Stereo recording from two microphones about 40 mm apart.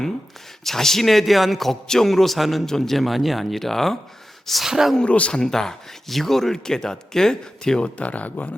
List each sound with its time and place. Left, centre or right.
0.6 s a man's voice: centre
4.6 s speech: centre
5.0 s speech: left
5.3 s speech: centre
7.9 s speech: left